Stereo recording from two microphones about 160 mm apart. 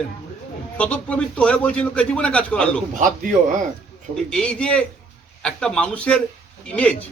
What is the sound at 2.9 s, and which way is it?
Speech, 55° right (ahead or behind).